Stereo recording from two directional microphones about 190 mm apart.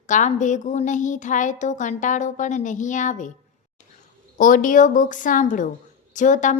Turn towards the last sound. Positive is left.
turn(degrees=40)  # may be behind; listen again after turning